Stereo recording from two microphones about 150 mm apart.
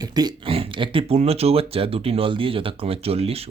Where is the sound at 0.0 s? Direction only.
25° right (ahead or behind).